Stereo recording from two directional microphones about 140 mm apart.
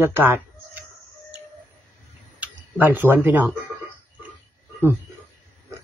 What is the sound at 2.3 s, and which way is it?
Speech, 15° right (ahead or behind).